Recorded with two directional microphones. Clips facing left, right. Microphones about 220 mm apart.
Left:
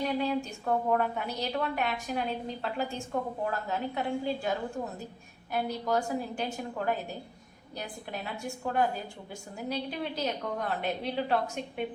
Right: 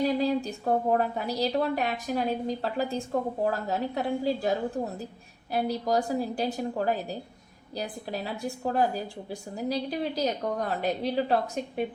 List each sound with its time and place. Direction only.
0.2 s a woman's voice: 35° right (ahead or behind)